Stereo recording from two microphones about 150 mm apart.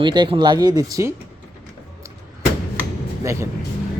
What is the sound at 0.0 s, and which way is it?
A man's voice, 30° right (ahead or behind).